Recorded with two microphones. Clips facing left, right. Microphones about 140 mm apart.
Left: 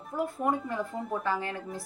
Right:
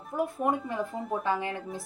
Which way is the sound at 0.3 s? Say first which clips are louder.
Even; 25° right (ahead or behind).